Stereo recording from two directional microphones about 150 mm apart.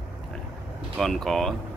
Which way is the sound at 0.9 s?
5° left (ahead or behind).